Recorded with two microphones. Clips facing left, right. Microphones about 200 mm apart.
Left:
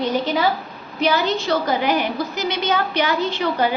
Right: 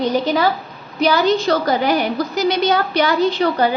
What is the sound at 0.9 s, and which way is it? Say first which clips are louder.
A woman's voice: right 4 dB; 40° right (ahead or behind).